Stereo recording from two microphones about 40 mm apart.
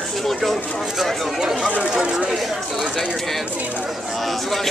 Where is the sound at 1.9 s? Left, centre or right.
Right.